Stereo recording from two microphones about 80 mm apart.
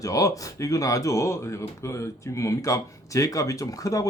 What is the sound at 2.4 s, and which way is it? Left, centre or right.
Speech, left.